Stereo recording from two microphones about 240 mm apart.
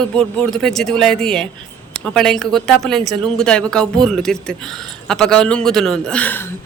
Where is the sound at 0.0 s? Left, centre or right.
Centre.